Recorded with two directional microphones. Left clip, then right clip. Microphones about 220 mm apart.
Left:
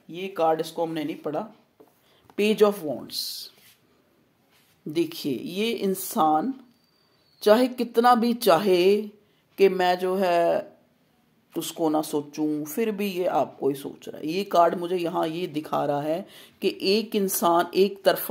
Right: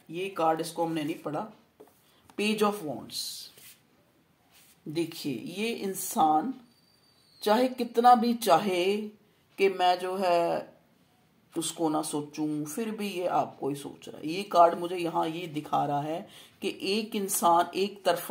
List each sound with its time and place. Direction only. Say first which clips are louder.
0.1 s speech: left 4 dB; 35° left (ahead or behind)
4.9 s speech: left 6 dB; 50° left (ahead or behind)